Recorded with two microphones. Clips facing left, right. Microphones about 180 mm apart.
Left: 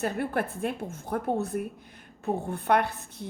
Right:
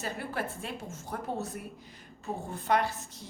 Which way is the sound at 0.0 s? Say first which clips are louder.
Left 7 dB; 55° left (ahead or behind).